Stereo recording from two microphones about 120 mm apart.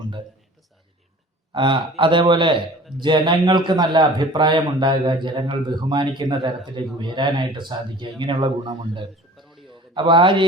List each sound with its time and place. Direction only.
1.5 s a man's voice: 45° right (ahead or behind)
9.4 s a sound: centre (ahead or behind)
9.7 s a man's voice: 45° right (ahead or behind)